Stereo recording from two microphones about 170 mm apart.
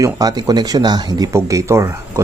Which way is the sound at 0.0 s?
20° right (ahead or behind).